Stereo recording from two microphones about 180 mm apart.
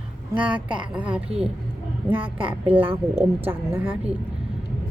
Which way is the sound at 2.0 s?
10° right (ahead or behind).